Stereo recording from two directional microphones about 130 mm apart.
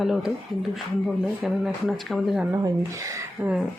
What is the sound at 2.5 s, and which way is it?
Speech, 25° right (ahead or behind).